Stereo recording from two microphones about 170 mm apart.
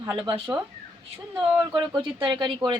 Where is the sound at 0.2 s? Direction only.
30° right (ahead or behind).